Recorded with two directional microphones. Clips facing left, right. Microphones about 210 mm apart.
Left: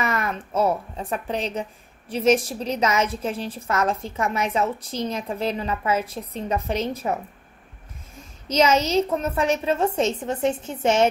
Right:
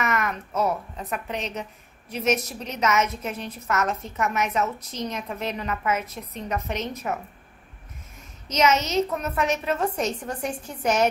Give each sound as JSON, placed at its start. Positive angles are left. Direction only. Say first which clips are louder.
{"t": 0.0, "sound": "a woman's voice", "louder": "left 1 dB", "side_deg": 30}
{"t": 8.5, "sound": "a woman's voice", "louder": "left 3 dB", "side_deg": 30}